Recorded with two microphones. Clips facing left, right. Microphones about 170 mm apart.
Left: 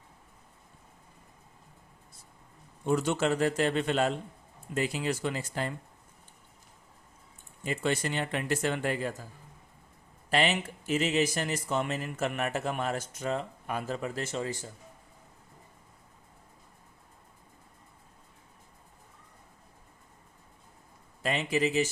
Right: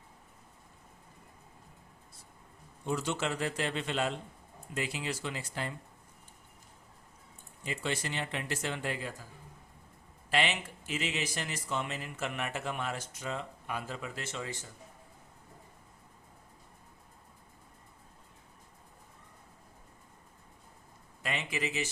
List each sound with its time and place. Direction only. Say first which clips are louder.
2.8 s speech: left 6 dB; 55° left (ahead or behind)
7.6 s speech: left 6 dB; 50° left (ahead or behind)
10.2 s speech: left 4 dB; 45° left (ahead or behind)
21.2 s speech: left 7 dB; 35° left (ahead or behind)